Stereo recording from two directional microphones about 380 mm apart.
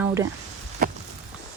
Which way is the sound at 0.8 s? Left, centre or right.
Right.